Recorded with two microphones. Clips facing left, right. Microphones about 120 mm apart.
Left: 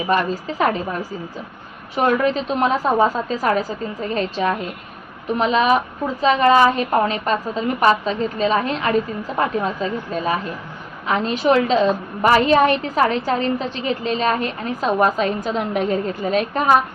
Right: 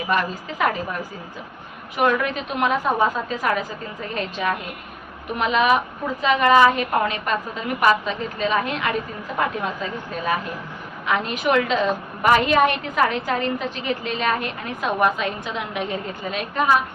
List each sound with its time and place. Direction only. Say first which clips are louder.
0.1 s a woman's voice: left 4 dB; 35° left (ahead or behind)
2.0 s a woman's voice: left 3 dB; 30° left (ahead or behind)
11.0 s a woman's voice: left 4 dB; 30° left (ahead or behind)